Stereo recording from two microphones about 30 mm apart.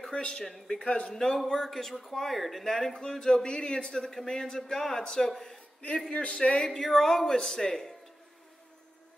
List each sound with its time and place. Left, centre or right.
0.1 s a man's voice: left; by 2.6 s centre
2.6 s a man's voice: centre
6.2 s speech: left
6.7 s speech: centre